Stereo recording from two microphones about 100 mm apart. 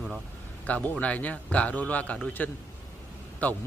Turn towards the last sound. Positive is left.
turn(degrees=15)  # may be behind; listen again after turning